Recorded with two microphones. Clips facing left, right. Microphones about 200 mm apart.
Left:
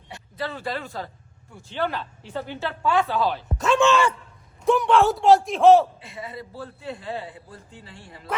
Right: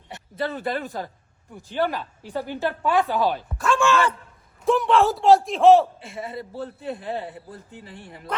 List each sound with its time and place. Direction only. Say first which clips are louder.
0.1 s speech: right 3 dB; 20° right (ahead or behind)
3.6 s a sound: left 2 dB; 20° left (ahead or behind)
4.6 s a man's voice: even; centre (ahead or behind)
6.0 s a man's voice: right 3 dB; 25° right (ahead or behind)